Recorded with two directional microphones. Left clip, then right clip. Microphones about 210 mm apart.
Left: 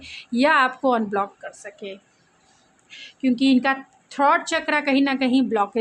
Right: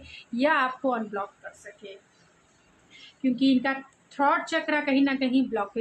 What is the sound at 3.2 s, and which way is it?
A woman's voice, 50° left (ahead or behind).